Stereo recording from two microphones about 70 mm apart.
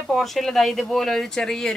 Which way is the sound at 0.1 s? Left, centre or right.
Centre.